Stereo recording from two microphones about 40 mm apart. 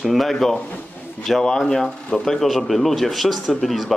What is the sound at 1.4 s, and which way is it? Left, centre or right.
A man's voice, centre.